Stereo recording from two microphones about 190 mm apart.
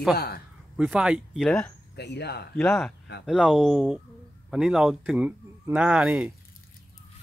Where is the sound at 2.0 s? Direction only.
60° left (ahead or behind).